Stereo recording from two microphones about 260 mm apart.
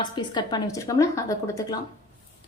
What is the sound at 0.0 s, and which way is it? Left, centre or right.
A woman's voice, centre.